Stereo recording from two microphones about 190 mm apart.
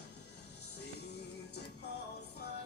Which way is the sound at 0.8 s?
60° left (ahead or behind).